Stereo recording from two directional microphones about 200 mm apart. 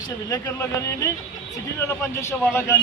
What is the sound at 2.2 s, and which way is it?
Speech, 10° left (ahead or behind).